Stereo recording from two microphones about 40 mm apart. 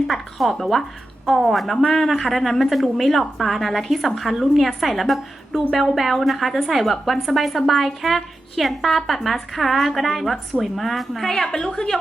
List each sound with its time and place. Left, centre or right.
0.1 s a woman's voice: centre
11.3 s a woman's voice: centre